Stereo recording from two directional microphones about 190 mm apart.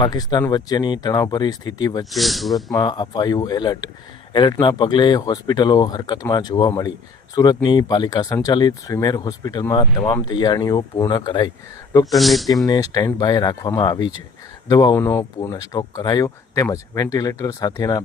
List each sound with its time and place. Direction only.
0.0 s speech: 20° left (ahead or behind)
2.0 s speech: centre (ahead or behind)
2.7 s speech: 20° left (ahead or behind)
12.1 s speech: centre (ahead or behind)
12.6 s speech: 20° left (ahead or behind)